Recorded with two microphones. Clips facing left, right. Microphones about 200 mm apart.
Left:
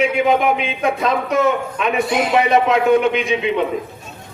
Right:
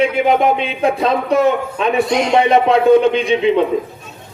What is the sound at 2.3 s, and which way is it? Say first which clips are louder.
Speech: right 3 dB; 30° right (ahead or behind).